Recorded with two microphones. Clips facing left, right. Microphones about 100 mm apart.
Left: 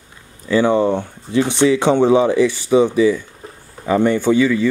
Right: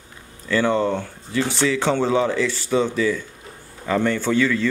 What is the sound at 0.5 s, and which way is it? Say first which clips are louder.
Speech: left 5 dB; 15° left (ahead or behind).